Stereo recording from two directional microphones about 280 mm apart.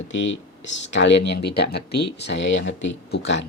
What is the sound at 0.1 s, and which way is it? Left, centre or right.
Speech, left.